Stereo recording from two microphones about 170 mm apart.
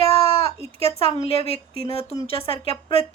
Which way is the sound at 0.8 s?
35° left (ahead or behind).